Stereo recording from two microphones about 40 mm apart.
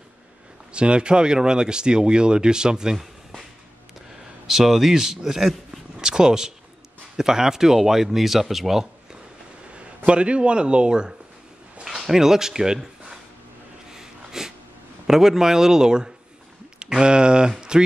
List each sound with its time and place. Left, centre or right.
0.7 s speech: right
3.0 s a sound: centre
4.5 s speech: centre
5.9 s a sound: centre
7.2 s speech: centre
10.0 s speech: right
11.8 s a man's voice: centre
13.9 s a sound: centre
15.0 s speech: centre